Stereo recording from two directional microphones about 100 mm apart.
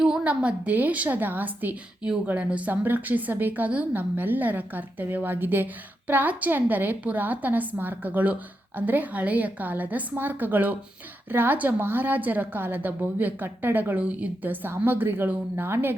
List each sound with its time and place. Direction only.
0.0 s a woman's voice: 10° right (ahead or behind)